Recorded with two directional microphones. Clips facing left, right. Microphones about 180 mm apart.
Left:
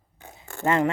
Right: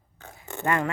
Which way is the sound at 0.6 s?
20° left (ahead or behind).